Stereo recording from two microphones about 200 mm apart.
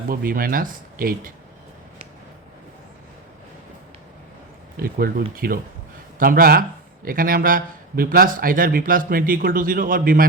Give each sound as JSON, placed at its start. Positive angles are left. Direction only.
{"t": 0.1, "sound": "a man's voice", "side_deg": -45}
{"t": 4.8, "sound": "a man's voice", "side_deg": -50}